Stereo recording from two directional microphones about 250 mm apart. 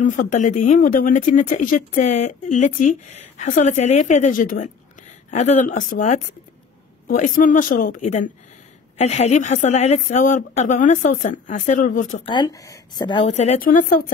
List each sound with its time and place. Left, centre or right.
0.0 s speech: left
12.4 s speech: centre; by 14.1 s left